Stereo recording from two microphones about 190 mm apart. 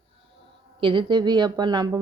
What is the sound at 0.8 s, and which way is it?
A woman's voice, 25° right (ahead or behind).